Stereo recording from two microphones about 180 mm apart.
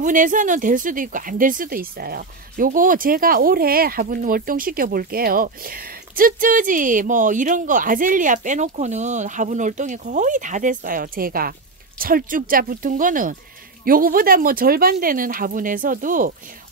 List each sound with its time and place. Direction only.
0.0 s speech: 45° right (ahead or behind)